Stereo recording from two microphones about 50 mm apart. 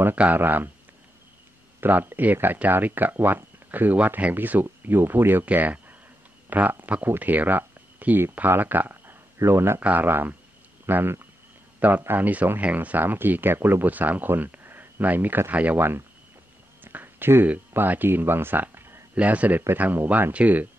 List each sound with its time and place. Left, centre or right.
0.4 s speech: right
1.8 s speech: right
9.4 s speech: right
9.8 s speech: right
10.0 s speech: right
12.1 s speech: right
13.8 s speech: right
15.5 s speech: right
16.8 s a sound: right
17.7 s speech: right
19.1 s speech: right